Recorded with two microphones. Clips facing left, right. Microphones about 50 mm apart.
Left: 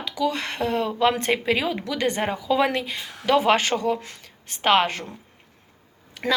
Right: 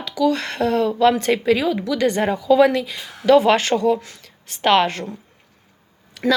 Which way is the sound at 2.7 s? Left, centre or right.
Left.